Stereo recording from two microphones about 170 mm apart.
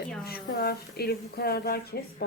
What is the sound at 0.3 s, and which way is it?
Speech, 65° left (ahead or behind).